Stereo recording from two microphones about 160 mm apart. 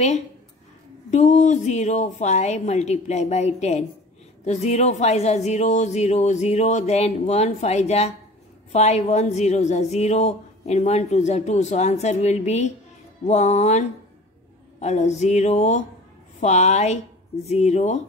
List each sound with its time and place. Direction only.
1.1 s a woman's voice: 50° left (ahead or behind)